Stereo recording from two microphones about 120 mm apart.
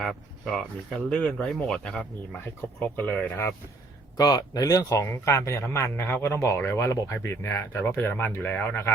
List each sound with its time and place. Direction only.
0.0 s speech: centre (ahead or behind); by 3.5 s 20° left (ahead or behind)
4.2 s speech: 30° left (ahead or behind); by 8.9 s 15° left (ahead or behind)